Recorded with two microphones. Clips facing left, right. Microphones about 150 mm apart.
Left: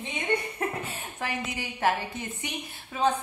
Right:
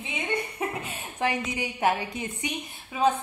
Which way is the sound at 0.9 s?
15° right (ahead or behind).